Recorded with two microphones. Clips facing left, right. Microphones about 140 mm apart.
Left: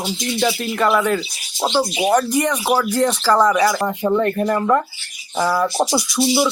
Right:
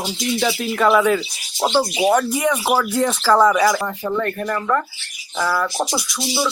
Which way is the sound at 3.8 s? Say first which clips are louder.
Left 5 dB; 20° left (ahead or behind).